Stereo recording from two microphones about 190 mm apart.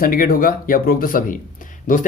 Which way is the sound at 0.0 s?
50° left (ahead or behind).